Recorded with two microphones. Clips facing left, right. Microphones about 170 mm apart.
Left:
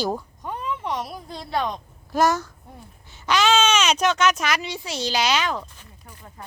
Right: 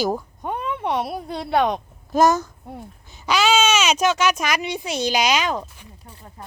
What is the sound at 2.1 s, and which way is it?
A child's voice, 20° right (ahead or behind).